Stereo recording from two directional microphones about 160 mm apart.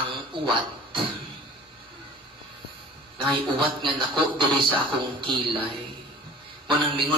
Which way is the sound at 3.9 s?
30° right (ahead or behind).